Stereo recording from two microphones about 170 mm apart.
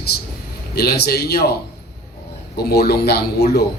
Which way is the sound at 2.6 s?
65° left (ahead or behind).